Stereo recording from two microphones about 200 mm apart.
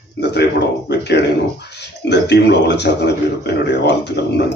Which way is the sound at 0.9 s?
60° left (ahead or behind).